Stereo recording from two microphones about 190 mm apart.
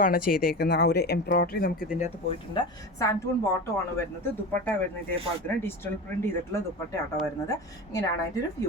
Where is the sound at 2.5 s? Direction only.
15° left (ahead or behind).